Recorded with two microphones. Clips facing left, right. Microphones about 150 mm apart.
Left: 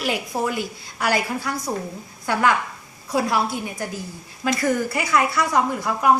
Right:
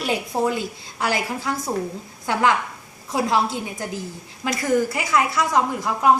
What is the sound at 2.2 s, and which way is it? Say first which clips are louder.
Speech: even; 15° right (ahead or behind).